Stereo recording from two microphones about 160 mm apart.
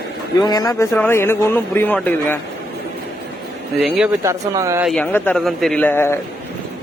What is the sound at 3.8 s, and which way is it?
Speech, 5° right (ahead or behind).